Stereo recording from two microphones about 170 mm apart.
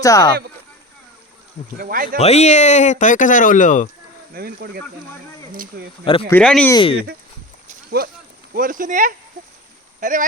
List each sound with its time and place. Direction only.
0.0 s speech: 20° left (ahead or behind)
1.8 s speech: 55° right (ahead or behind)
2.1 s speech: 40° left (ahead or behind)
4.4 s speech: 65° right (ahead or behind)
6.3 s speech: 5° left (ahead or behind)
6.7 s speech: 25° left (ahead or behind)
6.9 s speech: 65° right (ahead or behind); by 10.2 s 50° right (ahead or behind)